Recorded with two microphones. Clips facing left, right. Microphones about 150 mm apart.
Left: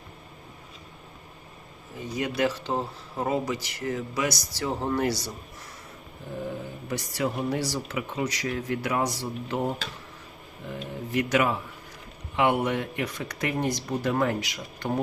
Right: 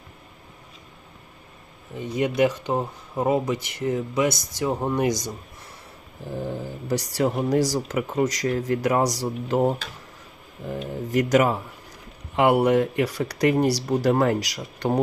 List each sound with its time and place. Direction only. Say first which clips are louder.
2.1 s speech: right 5 dB; 20° right (ahead or behind)
6.3 s speech: right 3 dB; 30° right (ahead or behind)